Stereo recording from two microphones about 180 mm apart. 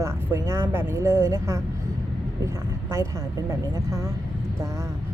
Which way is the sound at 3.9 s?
15° right (ahead or behind).